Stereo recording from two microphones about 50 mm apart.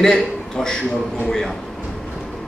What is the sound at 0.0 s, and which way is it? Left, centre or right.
Speech, centre.